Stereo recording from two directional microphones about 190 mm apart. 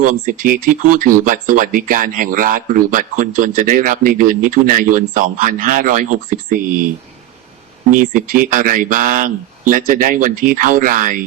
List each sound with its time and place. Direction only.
0.0 s speech: 45° right (ahead or behind)
8.1 s speech: 45° right (ahead or behind)